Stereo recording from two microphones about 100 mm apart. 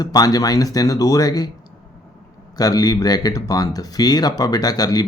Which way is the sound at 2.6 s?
40° left (ahead or behind).